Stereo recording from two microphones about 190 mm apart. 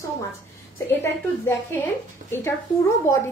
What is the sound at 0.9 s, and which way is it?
A woman's voice, 15° left (ahead or behind).